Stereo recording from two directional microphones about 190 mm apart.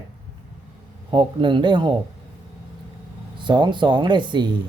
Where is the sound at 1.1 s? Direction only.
25° right (ahead or behind).